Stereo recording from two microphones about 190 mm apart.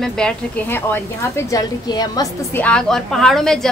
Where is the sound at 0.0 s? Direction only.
5° left (ahead or behind).